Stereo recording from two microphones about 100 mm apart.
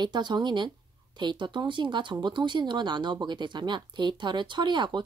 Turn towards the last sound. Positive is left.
turn(degrees=-50)  # may be behind; listen again after turning